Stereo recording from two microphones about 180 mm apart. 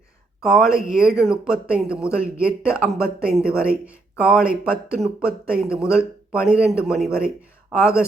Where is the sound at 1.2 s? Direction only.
5° right (ahead or behind).